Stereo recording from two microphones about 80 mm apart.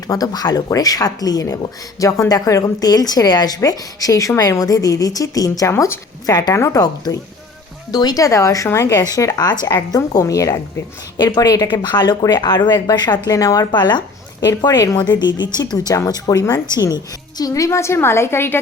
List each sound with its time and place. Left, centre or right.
0.1 s a woman's voice: left
5.7 s a woman's voice: left
6.2 s a woman's voice: left
6.8 s a woman's voice: left
11.7 s a woman's voice: left
13.3 s a woman's voice: left
13.7 s a woman's voice: left